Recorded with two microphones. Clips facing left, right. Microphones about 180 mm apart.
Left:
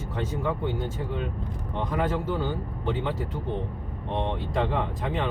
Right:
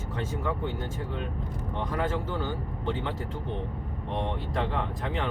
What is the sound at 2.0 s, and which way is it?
A man's voice, 15° left (ahead or behind).